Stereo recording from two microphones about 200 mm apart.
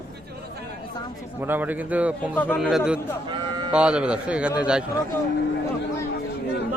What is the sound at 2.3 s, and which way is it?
Speech, 10° left (ahead or behind).